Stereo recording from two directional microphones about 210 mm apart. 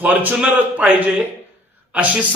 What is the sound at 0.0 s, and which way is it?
A man's voice, 10° right (ahead or behind).